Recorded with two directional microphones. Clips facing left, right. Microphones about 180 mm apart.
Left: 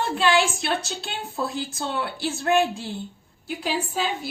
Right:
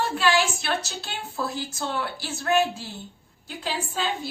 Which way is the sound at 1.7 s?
25° left (ahead or behind).